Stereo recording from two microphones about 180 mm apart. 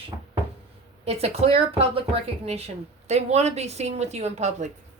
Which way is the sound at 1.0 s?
35° right (ahead or behind).